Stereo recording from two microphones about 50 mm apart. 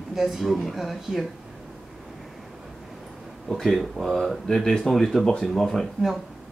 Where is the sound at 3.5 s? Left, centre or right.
Centre.